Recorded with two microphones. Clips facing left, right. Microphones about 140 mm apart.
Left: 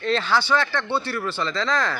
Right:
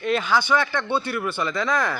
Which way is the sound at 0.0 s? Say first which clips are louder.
Even; 10° right (ahead or behind).